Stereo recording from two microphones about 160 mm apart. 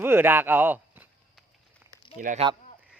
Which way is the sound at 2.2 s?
60° right (ahead or behind).